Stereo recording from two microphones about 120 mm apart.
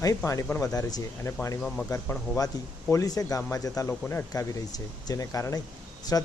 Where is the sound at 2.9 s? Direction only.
30° left (ahead or behind).